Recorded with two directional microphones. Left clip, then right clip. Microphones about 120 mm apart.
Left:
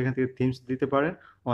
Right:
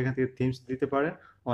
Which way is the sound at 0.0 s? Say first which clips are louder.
Left 2 dB; 15° left (ahead or behind).